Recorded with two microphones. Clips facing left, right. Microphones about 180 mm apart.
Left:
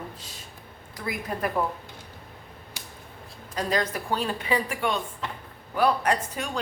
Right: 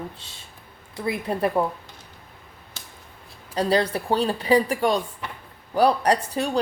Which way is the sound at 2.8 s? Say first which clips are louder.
Even; 15° left (ahead or behind).